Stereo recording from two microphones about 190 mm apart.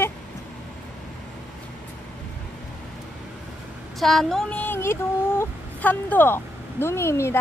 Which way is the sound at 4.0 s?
Centre (ahead or behind).